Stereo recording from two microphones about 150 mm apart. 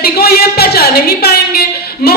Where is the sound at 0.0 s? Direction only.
90° left.